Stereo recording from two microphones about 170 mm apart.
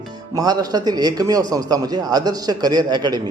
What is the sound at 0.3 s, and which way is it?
A man's voice, 20° right (ahead or behind).